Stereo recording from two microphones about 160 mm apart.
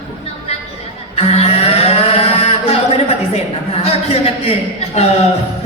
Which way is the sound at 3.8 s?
40° left (ahead or behind).